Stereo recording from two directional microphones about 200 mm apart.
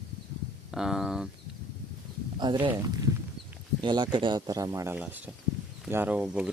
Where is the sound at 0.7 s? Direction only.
5° right (ahead or behind).